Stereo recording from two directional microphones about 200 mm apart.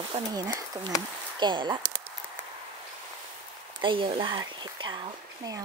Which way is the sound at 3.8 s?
25° right (ahead or behind).